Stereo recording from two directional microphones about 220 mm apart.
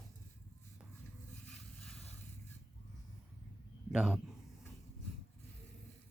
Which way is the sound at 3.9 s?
5° right (ahead or behind).